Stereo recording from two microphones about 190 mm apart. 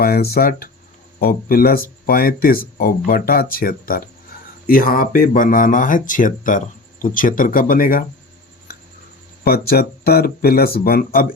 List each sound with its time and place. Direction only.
0.0 s speech: 55° left (ahead or behind)
9.4 s speech: 55° left (ahead or behind)